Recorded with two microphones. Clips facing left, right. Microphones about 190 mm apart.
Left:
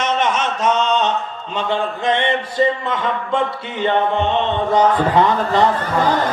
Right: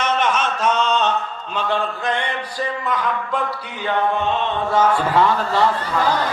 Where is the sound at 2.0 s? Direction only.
20° left (ahead or behind).